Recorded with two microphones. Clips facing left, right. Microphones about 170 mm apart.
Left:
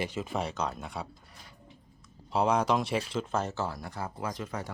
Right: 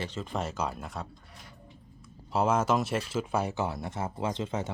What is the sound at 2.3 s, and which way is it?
Speech, centre (ahead or behind).